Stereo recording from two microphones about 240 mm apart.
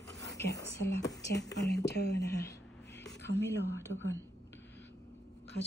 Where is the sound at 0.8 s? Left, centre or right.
Left.